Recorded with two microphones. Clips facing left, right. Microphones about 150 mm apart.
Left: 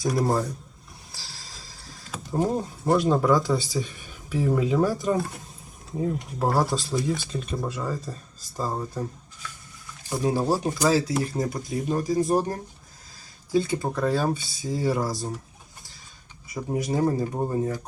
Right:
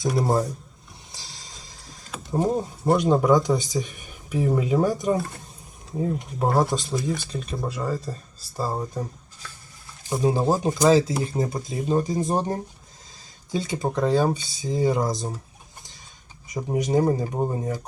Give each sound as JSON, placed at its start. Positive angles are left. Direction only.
{"t": 0.0, "sound": "speech", "side_deg": 0}
{"t": 0.3, "sound": "speech", "side_deg": -25}
{"t": 1.1, "sound": "music", "side_deg": -20}
{"t": 2.0, "sound": "a sound", "side_deg": 0}
{"t": 2.4, "sound": "speech", "side_deg": 0}
{"t": 2.9, "sound": "speech", "side_deg": -20}
{"t": 5.1, "sound": "speech", "side_deg": 0}
{"t": 7.7, "sound": "speech", "side_deg": -10}
{"t": 10.1, "sound": "speech", "side_deg": -20}
{"t": 16.6, "sound": "speech", "side_deg": -20}